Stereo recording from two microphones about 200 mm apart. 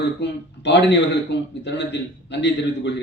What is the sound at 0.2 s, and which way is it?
A man's voice, 60° left (ahead or behind).